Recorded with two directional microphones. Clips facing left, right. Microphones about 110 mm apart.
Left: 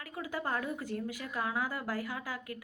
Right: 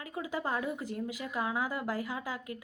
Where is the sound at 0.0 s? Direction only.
20° right (ahead or behind).